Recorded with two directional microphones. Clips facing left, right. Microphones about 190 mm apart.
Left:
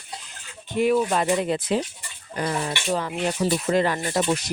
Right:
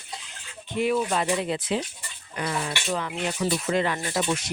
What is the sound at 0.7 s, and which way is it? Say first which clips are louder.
Speech: left 4 dB; 45° left (ahead or behind).